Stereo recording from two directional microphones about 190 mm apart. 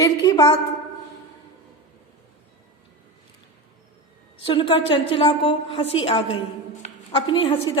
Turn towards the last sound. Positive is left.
turn(degrees=25)  # may be behind; listen again after turning